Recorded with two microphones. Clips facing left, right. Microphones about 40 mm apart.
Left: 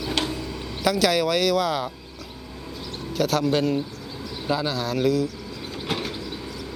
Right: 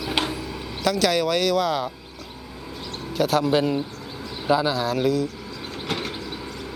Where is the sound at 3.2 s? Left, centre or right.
Centre.